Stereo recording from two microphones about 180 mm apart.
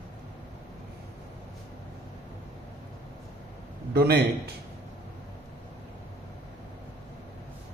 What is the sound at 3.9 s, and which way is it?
Speech, 65° right (ahead or behind).